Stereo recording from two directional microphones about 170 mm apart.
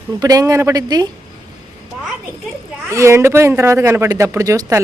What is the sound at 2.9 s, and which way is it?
Speech, 15° right (ahead or behind).